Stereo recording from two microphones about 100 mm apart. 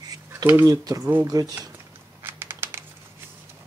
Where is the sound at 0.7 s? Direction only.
35° right (ahead or behind).